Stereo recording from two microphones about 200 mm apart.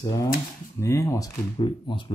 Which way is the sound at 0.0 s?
15° left (ahead or behind).